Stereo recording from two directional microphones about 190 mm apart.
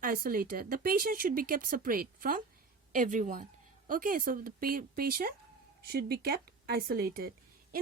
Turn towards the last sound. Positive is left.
turn(degrees=-55)  # may be behind; listen again after turning